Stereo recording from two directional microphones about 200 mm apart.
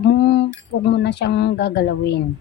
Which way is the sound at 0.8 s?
60° left (ahead or behind).